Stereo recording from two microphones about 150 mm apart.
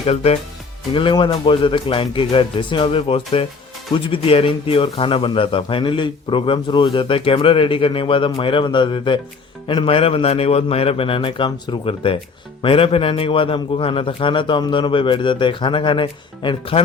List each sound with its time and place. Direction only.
0.0 s speech: 40° left (ahead or behind)